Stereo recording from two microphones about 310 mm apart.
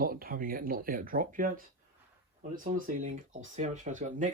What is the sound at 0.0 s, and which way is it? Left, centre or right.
Speech, right.